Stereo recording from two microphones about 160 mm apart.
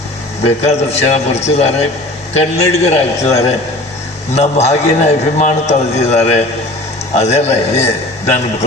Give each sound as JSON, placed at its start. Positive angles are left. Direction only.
{"t": 0.4, "sound": "a man's voice", "side_deg": 45}